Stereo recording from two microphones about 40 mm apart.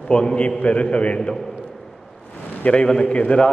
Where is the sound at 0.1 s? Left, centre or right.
Left.